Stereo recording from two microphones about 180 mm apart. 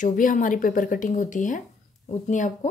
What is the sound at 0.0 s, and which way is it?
Speech, 45° left (ahead or behind).